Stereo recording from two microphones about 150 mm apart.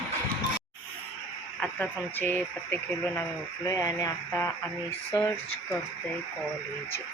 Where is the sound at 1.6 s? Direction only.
10° left (ahead or behind).